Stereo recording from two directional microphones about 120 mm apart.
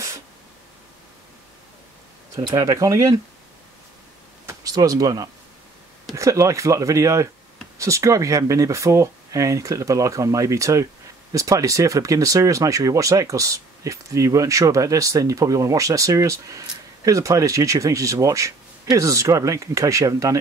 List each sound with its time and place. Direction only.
2.3 s speech: 30° right (ahead or behind)
4.5 s speech: 30° right (ahead or behind)